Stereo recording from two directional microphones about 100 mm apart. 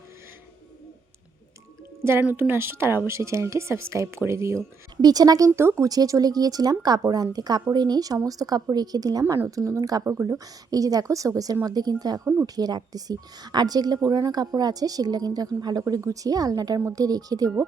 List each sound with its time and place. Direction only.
2.2 s speech: 20° right (ahead or behind)
5.0 s speech: 40° right (ahead or behind)
5.5 s speech: 30° right (ahead or behind)